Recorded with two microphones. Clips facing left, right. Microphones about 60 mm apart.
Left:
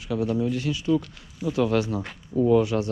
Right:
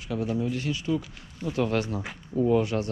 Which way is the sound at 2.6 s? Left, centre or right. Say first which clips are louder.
Left 3 dB; right.